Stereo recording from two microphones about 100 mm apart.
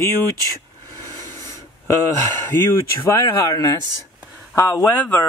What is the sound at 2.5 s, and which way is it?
Speech, 25° left (ahead or behind).